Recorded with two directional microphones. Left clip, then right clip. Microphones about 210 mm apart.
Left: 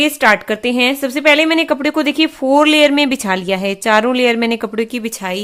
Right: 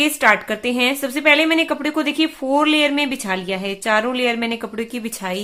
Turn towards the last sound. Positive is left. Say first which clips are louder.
# left 4 dB
turn(degrees=35)  # may be behind; listen again after turning